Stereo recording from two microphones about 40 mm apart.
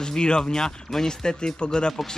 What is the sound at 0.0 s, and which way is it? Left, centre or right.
Speech, left.